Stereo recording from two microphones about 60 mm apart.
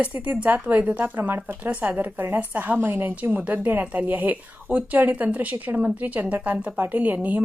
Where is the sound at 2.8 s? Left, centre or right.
Right.